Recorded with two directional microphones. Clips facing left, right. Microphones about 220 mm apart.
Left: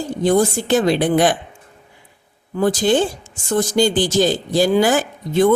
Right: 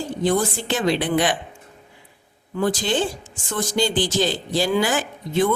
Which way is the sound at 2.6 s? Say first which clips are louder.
Left 6 dB; 45° left (ahead or behind).